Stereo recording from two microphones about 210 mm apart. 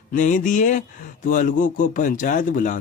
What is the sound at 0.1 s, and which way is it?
Speech, 35° left (ahead or behind).